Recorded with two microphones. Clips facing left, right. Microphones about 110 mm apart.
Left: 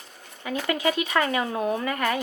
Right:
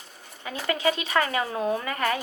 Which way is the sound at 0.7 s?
30° right (ahead or behind).